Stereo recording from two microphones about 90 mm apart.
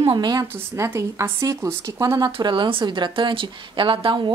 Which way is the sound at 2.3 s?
65° right (ahead or behind).